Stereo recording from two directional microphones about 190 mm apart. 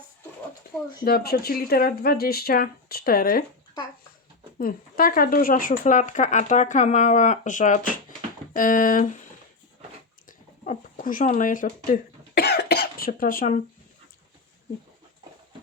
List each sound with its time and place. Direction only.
0.7 s speech: 55° left (ahead or behind)
4.5 s speech: 50° left (ahead or behind)
10.2 s a sound: 45° left (ahead or behind)